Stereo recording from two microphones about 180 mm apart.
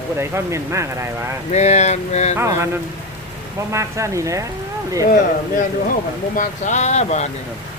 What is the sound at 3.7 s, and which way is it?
Speech, 15° right (ahead or behind).